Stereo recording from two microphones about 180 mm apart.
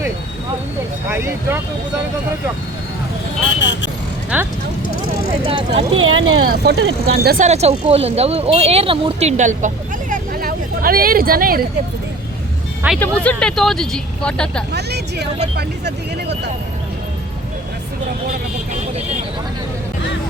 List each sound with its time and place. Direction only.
1.1 s speech: 15° right (ahead or behind)
3.6 s speech: 80° left
4.3 s speech: 5° right (ahead or behind)
5.5 s speech: 30° right (ahead or behind)
6.0 s speech: 75° right (ahead or behind)
7.3 s speech: 40° right (ahead or behind); by 11.6 s 55° right (ahead or behind)
13.0 s a woman's voice: 5° left (ahead or behind)
14.7 s speech: 65° right (ahead or behind)